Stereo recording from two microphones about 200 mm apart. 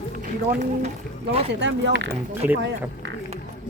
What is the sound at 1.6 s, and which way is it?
Speech, 60° right (ahead or behind).